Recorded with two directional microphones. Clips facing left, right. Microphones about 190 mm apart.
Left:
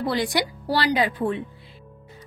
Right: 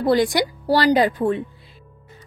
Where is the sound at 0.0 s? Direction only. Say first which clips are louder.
Right 6 dB; 45° right (ahead or behind).